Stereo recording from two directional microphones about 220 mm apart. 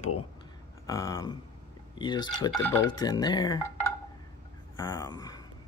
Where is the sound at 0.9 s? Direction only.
15° left (ahead or behind).